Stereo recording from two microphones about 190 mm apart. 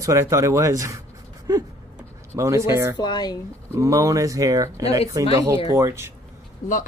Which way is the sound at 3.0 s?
20° left (ahead or behind).